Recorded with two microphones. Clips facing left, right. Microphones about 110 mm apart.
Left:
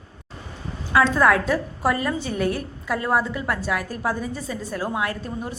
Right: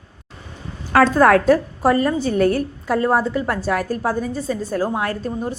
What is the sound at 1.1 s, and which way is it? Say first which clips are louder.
A woman's voice: right 6 dB; 45° right (ahead or behind).